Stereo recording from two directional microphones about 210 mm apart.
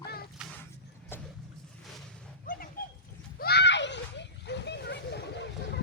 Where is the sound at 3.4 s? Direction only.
50° left (ahead or behind).